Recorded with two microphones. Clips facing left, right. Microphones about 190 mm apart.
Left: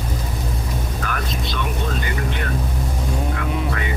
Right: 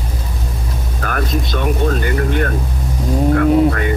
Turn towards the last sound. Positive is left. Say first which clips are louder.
# right 12 dB
turn(degrees=-50)  # may be behind; listen again after turning